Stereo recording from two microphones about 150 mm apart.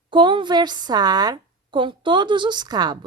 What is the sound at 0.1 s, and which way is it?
A woman's voice, 30° right (ahead or behind).